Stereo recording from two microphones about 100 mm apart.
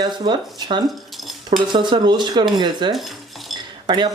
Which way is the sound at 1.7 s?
50° right (ahead or behind).